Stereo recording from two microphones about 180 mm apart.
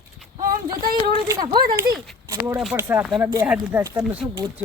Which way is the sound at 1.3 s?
25° right (ahead or behind).